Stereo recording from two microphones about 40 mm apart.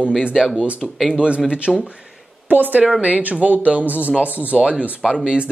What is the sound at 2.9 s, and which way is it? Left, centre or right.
Speech, right.